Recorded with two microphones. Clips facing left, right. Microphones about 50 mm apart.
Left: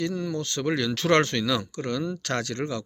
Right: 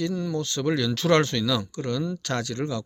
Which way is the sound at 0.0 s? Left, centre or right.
Left.